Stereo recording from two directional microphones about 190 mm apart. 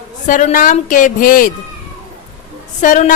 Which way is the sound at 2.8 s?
40° left (ahead or behind).